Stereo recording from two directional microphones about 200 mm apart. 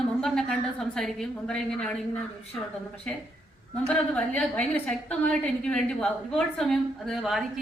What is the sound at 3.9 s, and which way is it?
A woman's voice, 5° left (ahead or behind).